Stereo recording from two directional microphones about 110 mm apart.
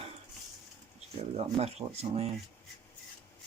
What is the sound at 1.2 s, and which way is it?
Speech, 65° right (ahead or behind).